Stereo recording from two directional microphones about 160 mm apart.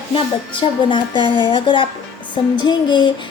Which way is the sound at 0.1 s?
30° left (ahead or behind).